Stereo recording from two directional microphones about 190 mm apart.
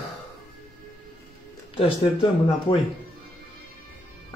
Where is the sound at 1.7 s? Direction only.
30° left (ahead or behind).